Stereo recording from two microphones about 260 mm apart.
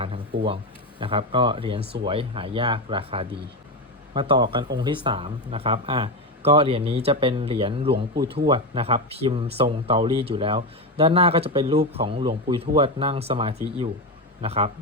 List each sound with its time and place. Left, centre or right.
0.0 s speech: right